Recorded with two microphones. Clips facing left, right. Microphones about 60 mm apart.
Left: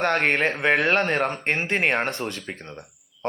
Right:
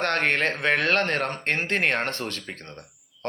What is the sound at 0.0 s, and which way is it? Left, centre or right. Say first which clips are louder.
Speech: left 2 dB; centre.